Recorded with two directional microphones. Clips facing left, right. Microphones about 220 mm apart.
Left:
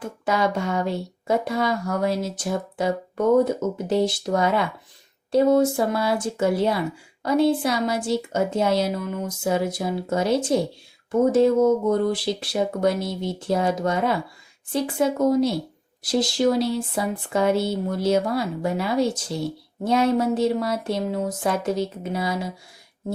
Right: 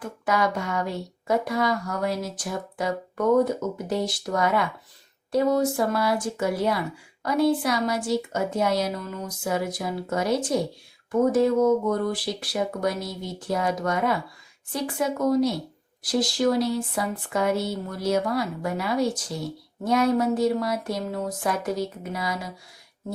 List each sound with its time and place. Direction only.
0.3 s speech: 25° left (ahead or behind)